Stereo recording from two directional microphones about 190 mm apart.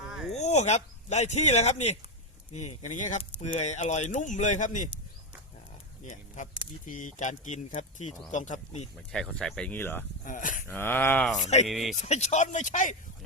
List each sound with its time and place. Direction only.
0.1 s a sound: centre (ahead or behind)
0.3 s speech: 35° left (ahead or behind)
6.0 s speech: 40° left (ahead or behind)
9.0 s speech: centre (ahead or behind)
10.2 s speech: 45° left (ahead or behind)
10.7 s a sound: 10° left (ahead or behind)
11.4 s speech: 35° left (ahead or behind)
11.7 s speech: centre (ahead or behind)
11.9 s speech: 35° left (ahead or behind)